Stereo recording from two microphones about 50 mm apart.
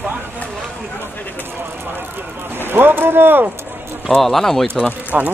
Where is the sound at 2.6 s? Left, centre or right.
Right.